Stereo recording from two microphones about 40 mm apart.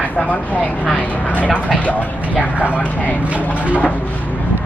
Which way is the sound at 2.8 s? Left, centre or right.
Left.